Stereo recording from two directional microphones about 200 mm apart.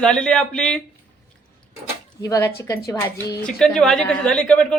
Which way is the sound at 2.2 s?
15° left (ahead or behind).